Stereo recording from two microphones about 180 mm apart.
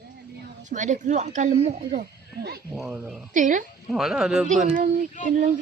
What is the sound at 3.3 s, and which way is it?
Speech, 45° right (ahead or behind).